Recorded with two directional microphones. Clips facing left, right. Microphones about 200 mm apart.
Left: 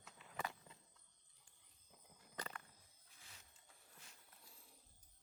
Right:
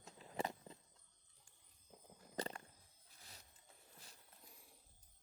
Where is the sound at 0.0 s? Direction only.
30° right (ahead or behind).